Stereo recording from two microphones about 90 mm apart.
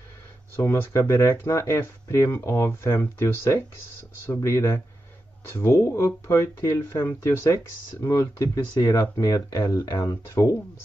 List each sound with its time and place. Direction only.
0.7 s speech: 30° left (ahead or behind); by 10.0 s 50° left (ahead or behind)